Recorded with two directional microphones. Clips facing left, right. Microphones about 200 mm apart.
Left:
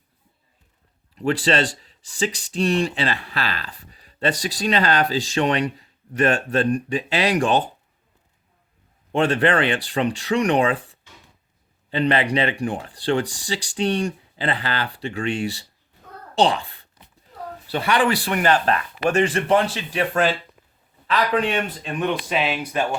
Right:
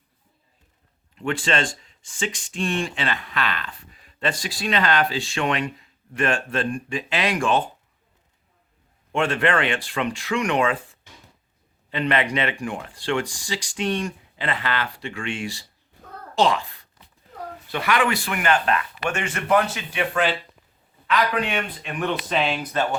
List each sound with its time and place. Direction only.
1.1 s speech: 35° left (ahead or behind)
9.1 s speech: 35° left (ahead or behind)
16.3 s a sound: 30° left (ahead or behind)
17.7 s speech: 30° left (ahead or behind)
22.0 s speech: 5° left (ahead or behind)